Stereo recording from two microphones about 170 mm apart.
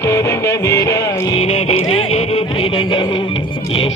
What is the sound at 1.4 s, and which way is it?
Music, 40° left (ahead or behind).